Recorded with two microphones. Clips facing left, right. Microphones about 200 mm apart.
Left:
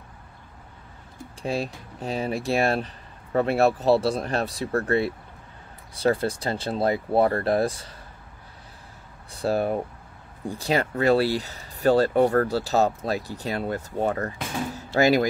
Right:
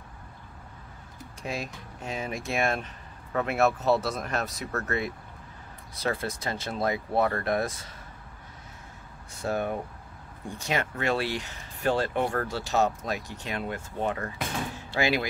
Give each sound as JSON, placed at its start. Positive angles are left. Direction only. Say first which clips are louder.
{"t": 1.4, "sound": "speech", "louder": "left 6 dB", "side_deg": 30}
{"t": 9.3, "sound": "speech", "louder": "left 5 dB", "side_deg": 35}